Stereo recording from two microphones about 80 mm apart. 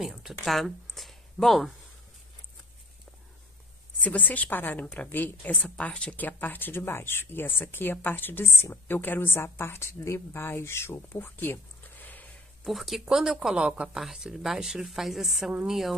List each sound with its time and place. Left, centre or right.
0.0 s speech: centre
4.0 s a woman's voice: centre
12.6 s speech: centre